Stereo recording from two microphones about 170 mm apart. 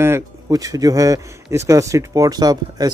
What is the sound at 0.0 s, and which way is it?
A man's voice, 15° right (ahead or behind).